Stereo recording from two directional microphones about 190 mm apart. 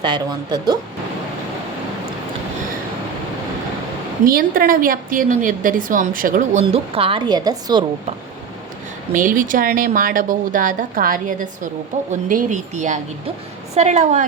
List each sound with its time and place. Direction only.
0.0 s speech: 25° right (ahead or behind)
4.3 s a woman's voice: 50° right (ahead or behind); by 7.9 s 20° right (ahead or behind)
9.1 s a woman's voice: 45° right (ahead or behind)